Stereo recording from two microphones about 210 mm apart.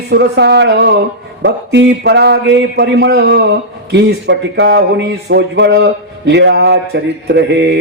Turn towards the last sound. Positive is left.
turn(degrees=-55)  # may be behind; listen again after turning